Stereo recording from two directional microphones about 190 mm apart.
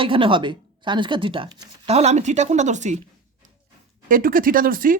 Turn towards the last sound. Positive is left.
turn(degrees=-45)  # may be behind; listen again after turning